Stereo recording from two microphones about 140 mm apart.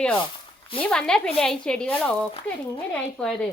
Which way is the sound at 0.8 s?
5° left (ahead or behind).